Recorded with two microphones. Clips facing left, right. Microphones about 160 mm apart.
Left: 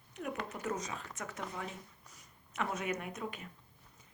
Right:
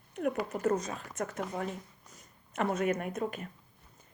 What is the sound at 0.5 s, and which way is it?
Speech, 50° right (ahead or behind).